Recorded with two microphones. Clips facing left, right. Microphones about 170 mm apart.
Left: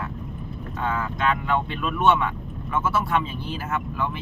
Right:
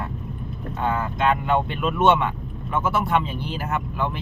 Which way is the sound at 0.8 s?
20° right (ahead or behind).